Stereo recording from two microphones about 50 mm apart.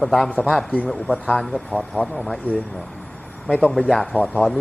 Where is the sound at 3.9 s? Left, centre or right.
Centre.